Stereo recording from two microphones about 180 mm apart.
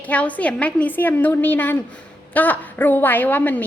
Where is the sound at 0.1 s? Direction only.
10° left (ahead or behind).